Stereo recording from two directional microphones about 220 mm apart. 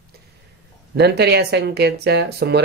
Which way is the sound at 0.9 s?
50° right (ahead or behind).